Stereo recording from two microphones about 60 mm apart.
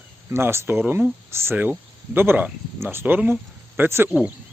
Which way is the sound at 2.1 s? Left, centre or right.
Right.